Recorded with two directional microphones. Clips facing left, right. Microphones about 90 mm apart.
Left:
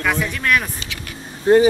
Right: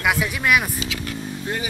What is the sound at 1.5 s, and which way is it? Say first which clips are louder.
Speech: left 17 dB; 35° left (ahead or behind).